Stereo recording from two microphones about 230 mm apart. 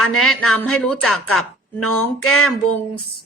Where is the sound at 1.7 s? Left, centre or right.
Left.